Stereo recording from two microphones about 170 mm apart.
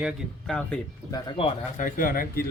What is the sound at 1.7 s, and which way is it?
Speech, 55° left (ahead or behind).